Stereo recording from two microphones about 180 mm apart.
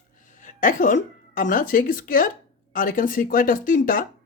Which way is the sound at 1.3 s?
50° left (ahead or behind).